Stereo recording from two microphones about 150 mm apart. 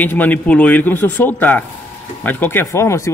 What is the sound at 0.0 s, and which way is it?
Speech, 10° left (ahead or behind).